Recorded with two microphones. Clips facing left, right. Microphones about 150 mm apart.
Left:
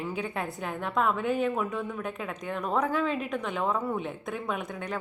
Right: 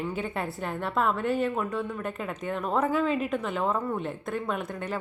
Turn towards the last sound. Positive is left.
turn(degrees=0)  # may be behind; listen again after turning